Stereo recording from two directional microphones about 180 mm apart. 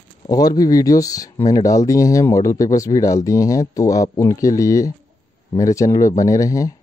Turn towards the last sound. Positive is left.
turn(degrees=20)  # may be behind; listen again after turning